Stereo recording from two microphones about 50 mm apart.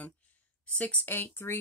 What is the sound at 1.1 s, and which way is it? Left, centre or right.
Speech, left.